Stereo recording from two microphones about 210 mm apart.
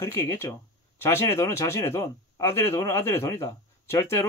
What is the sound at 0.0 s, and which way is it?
Speech, 10° left (ahead or behind).